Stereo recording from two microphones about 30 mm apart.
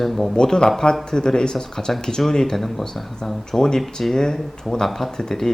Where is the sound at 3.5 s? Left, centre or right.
Centre.